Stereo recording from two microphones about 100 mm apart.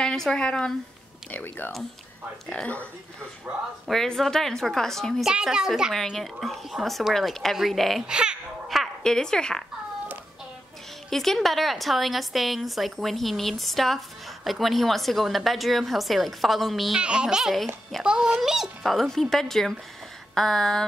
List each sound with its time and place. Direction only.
0.0 s a woman's voice: 5° left (ahead or behind)
1.3 s a woman's voice: 20° left (ahead or behind)
5.3 s a woman's voice: 5° right (ahead or behind)
8.1 s babbling: 10° right (ahead or behind); by 9.6 s 5° left (ahead or behind)
11.1 s a woman's voice: 5° left (ahead or behind)